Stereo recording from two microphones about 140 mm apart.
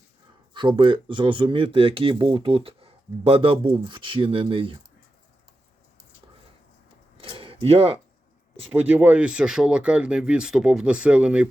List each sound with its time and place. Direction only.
0.5 s speech: 35° right (ahead or behind)
7.2 s a sound: 40° right (ahead or behind)
8.7 s speech: 10° right (ahead or behind)